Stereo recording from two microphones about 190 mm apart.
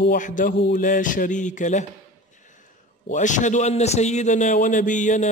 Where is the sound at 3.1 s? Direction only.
40° left (ahead or behind).